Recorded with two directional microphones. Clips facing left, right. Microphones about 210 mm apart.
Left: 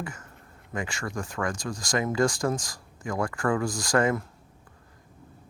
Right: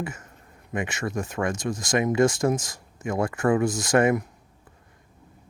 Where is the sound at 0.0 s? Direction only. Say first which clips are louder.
Right 4 dB; 20° right (ahead or behind).